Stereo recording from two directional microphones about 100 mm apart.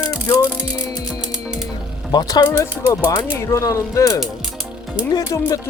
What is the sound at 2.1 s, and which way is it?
Speech, 45° left (ahead or behind).